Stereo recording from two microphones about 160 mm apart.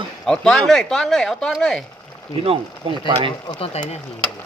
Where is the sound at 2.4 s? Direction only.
35° right (ahead or behind).